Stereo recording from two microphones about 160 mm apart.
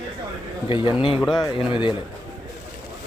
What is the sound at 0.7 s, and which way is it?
Speech, 30° left (ahead or behind).